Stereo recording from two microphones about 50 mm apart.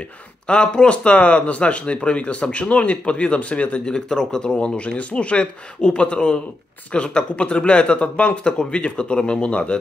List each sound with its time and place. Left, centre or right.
0.5 s speech: centre